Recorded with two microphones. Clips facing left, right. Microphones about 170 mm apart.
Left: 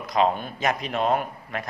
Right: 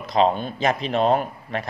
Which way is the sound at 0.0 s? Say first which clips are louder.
Right 3 dB; 25° right (ahead or behind).